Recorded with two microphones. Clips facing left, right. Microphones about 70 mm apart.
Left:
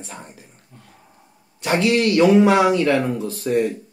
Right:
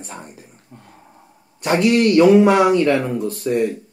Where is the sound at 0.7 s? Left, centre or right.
Right.